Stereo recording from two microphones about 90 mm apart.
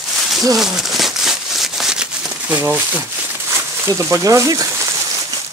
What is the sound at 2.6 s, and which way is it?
Speech, 20° right (ahead or behind).